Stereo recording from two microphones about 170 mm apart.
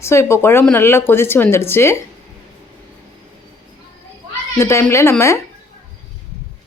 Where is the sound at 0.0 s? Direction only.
15° left (ahead or behind).